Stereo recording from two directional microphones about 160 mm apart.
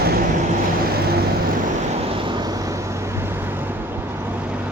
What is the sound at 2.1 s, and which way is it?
Vehicle, 30° right (ahead or behind).